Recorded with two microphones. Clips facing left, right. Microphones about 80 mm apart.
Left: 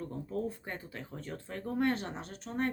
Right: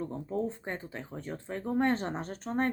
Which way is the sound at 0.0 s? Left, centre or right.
Right.